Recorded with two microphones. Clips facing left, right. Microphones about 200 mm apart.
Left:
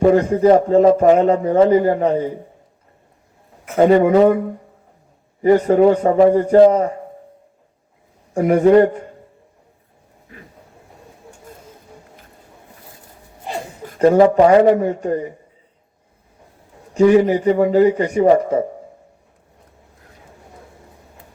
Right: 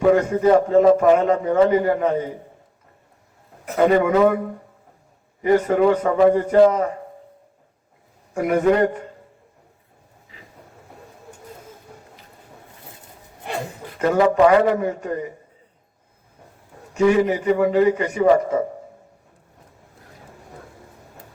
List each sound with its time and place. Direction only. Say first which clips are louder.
0.0 s a man's voice: left 3 dB; 35° left (ahead or behind)
3.8 s a man's voice: left 4 dB; 35° left (ahead or behind)
5.4 s a man's voice: left 5 dB; 35° left (ahead or behind)
8.3 s a man's voice: left 6 dB; 35° left (ahead or behind)
13.5 s a sound: left 1 dB; 65° right (ahead or behind)
13.8 s a sound: left 7 dB; 40° left (ahead or behind)
14.3 s a man's voice: left 4 dB; 35° left (ahead or behind)
16.9 s a man's voice: left 5 dB; 35° left (ahead or behind)